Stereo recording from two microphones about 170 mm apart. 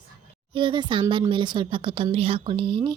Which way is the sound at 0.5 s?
30° right (ahead or behind).